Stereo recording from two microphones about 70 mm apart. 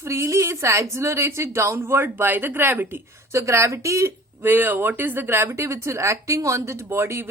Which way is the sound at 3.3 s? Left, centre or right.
Right.